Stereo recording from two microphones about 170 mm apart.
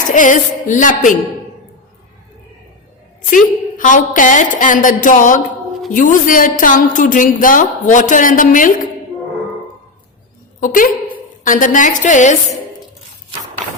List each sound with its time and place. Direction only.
0.1 s a woman's voice: 50° left (ahead or behind)
3.2 s a woman's voice: 50° left (ahead or behind)
10.6 s a woman's voice: 55° left (ahead or behind)